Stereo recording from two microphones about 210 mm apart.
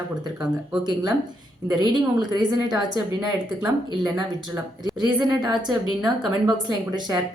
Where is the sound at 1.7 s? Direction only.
20° right (ahead or behind).